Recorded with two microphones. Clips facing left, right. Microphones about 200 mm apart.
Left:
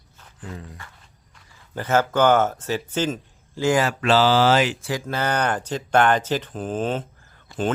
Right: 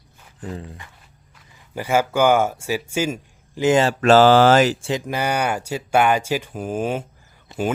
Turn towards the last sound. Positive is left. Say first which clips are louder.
# right 1 dB
turn(degrees=-10)  # may be behind; listen again after turning